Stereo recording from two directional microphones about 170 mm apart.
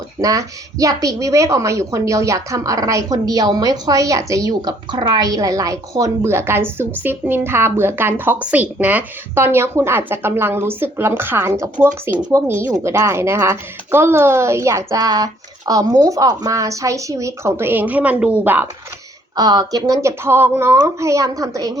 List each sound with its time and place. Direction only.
0.2 s a woman's voice: 20° right (ahead or behind)
19.4 s speech: 25° right (ahead or behind)